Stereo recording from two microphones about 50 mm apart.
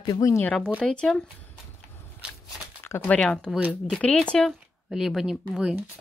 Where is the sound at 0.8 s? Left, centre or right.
Centre.